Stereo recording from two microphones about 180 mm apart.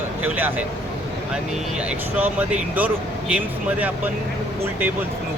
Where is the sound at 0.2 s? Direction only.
10° right (ahead or behind).